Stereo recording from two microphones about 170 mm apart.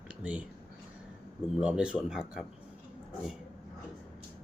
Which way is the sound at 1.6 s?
5° right (ahead or behind).